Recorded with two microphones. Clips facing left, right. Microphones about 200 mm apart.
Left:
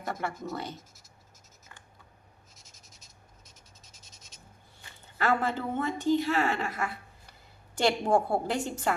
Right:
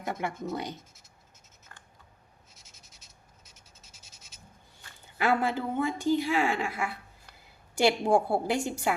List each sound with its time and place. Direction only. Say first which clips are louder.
0.0 s a woman's voice: right 1 dB; 15° right (ahead or behind)
0.8 s speech: even; centre (ahead or behind)
2.6 s scratch: left 1 dB; centre (ahead or behind)
5.1 s a woman's voice: right 1 dB; 10° right (ahead or behind)